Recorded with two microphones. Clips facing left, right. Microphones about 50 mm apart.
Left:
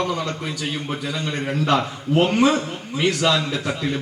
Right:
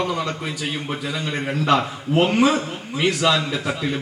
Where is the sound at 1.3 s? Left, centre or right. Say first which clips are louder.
Right 1 dB; centre.